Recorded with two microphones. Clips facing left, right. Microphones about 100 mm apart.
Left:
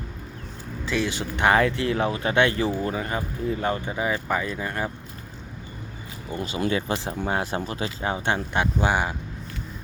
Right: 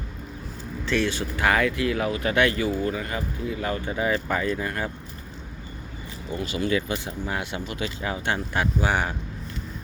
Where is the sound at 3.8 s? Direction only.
20° left (ahead or behind).